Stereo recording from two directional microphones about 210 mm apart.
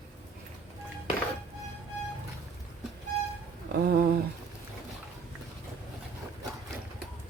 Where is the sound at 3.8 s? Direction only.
45° right (ahead or behind).